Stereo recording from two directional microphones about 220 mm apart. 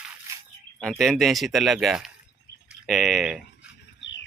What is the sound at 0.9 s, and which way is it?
Speech, centre (ahead or behind).